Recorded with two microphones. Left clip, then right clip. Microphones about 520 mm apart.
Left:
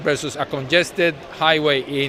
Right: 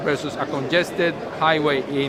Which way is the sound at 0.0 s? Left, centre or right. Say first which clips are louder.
Left 2 dB; left.